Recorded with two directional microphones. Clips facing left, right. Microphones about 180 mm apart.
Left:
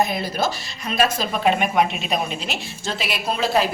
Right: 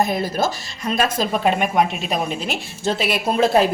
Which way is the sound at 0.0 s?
45° right (ahead or behind).